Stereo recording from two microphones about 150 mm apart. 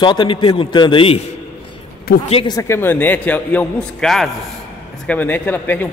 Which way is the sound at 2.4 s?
25° left (ahead or behind).